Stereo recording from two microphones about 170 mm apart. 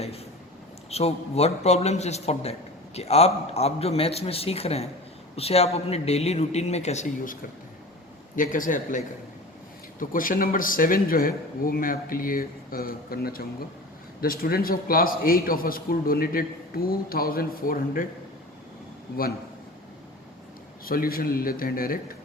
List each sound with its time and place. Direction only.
0.9 s a man's voice: 35° left (ahead or behind)
8.4 s a man's voice: 50° left (ahead or behind)
20.8 s a man's voice: 60° left (ahead or behind)